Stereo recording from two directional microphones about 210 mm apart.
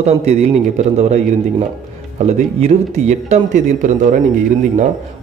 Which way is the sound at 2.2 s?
30° right (ahead or behind).